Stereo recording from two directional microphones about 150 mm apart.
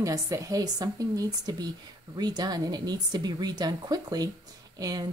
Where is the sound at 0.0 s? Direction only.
20° right (ahead or behind).